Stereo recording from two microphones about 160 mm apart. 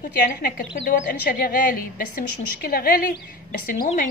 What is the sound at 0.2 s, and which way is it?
A woman's voice, 65° left (ahead or behind).